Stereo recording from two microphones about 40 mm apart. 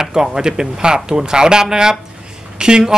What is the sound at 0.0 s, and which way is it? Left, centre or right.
Speech, centre.